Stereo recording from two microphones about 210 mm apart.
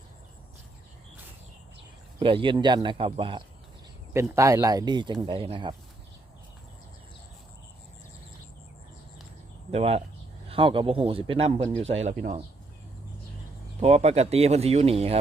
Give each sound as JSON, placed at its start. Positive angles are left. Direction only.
{"t": 2.1, "sound": "speech", "side_deg": -25}
{"t": 4.1, "sound": "speech", "side_deg": -15}
{"t": 9.7, "sound": "speech", "side_deg": -30}
{"t": 13.8, "sound": "speech", "side_deg": -30}